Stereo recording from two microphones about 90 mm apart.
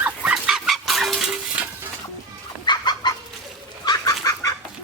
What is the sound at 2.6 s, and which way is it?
Chicken, 55° left (ahead or behind).